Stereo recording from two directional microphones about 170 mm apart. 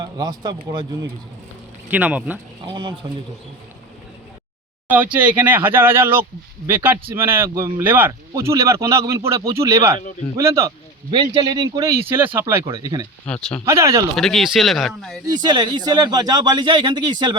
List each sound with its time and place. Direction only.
0.0 s speech: 25° right (ahead or behind)
1.9 s speech: 10° right (ahead or behind)
2.6 s speech: 30° right (ahead or behind)
5.3 s speech: 10° right (ahead or behind)
13.2 s speech: 5° left (ahead or behind)
13.7 s speech: 15° right (ahead or behind)
14.2 s speech: centre (ahead or behind)
15.3 s speech: 25° right (ahead or behind)